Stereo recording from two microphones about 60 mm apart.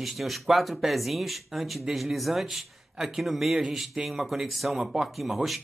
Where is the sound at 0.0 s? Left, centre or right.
Centre.